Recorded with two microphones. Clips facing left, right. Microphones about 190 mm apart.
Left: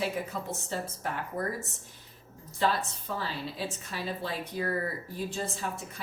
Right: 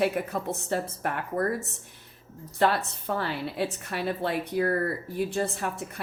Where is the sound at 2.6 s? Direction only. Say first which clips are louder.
Right 4 dB; 60° right (ahead or behind).